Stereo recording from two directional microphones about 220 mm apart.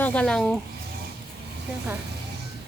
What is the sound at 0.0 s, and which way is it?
Speech, 5° left (ahead or behind).